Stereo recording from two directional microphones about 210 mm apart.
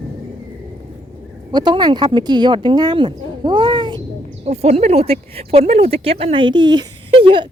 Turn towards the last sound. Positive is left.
turn(degrees=-25)  # may be behind; listen again after turning